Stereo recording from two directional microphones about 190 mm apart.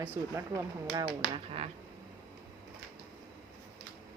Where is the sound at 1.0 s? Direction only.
30° right (ahead or behind).